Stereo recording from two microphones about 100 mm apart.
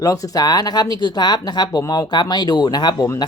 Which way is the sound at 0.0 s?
35° left (ahead or behind).